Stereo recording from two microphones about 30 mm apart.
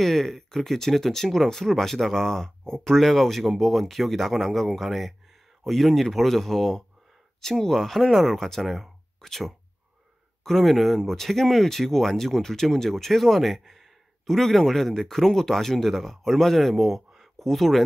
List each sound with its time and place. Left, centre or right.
0.0 s speech: centre
9.2 s speech: centre
10.4 s speech: centre
16.7 s speech: centre
17.4 s speech: centre